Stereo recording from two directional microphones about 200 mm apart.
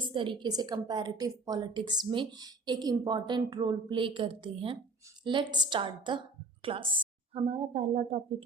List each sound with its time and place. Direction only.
0.1 s a woman's voice: 25° right (ahead or behind)